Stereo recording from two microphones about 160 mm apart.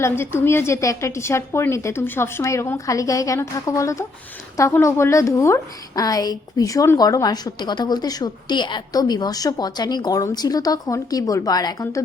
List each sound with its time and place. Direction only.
0.0 s a woman's voice: 15° left (ahead or behind)